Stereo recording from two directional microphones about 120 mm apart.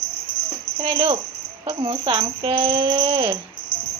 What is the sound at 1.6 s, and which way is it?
Speech, 45° right (ahead or behind).